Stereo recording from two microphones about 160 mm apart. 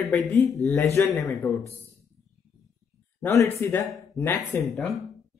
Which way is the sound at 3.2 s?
20° left (ahead or behind).